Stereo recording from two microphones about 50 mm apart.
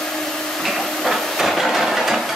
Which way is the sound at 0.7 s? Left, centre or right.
Centre.